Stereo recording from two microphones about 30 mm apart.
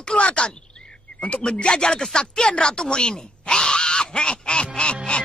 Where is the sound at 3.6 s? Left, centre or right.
Left.